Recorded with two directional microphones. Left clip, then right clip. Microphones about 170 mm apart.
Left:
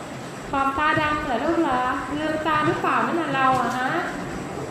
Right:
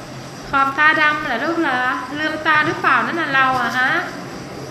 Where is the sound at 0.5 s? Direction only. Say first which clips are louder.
Right 7 dB; centre (ahead or behind).